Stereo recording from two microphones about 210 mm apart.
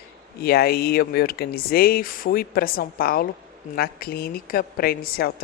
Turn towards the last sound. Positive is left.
turn(degrees=45)  # may be behind; listen again after turning